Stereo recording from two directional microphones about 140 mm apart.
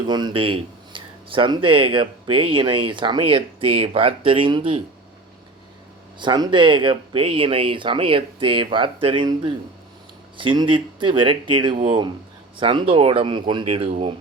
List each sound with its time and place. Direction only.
0.1 s speech: 30° right (ahead or behind)
6.1 s speech: 30° right (ahead or behind)